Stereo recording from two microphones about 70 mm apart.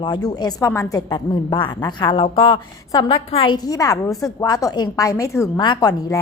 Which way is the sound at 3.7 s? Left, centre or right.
Left.